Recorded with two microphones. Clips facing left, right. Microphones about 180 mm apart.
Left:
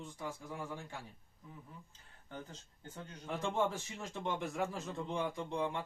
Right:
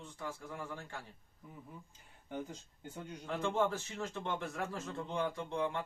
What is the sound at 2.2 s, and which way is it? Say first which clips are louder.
Speech: right 6 dB; 10° right (ahead or behind).